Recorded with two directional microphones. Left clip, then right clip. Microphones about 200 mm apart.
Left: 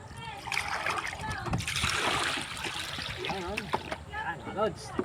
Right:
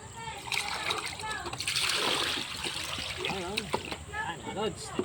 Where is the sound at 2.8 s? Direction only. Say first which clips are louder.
Right 1 dB; 30° left (ahead or behind).